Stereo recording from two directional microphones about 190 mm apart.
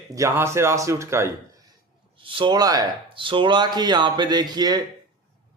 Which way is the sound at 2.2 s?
25° right (ahead or behind).